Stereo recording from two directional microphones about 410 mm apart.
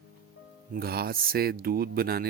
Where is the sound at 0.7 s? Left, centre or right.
Right.